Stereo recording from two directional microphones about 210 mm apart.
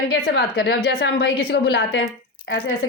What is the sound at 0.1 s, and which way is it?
A woman's voice, 50° left (ahead or behind).